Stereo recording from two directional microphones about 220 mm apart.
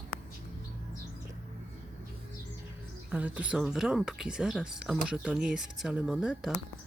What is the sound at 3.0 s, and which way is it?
Speech, 5° right (ahead or behind).